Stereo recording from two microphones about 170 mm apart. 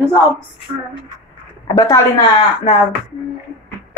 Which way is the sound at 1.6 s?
20° left (ahead or behind).